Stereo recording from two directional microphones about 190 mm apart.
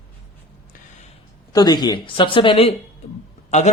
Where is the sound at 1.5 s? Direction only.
20° left (ahead or behind).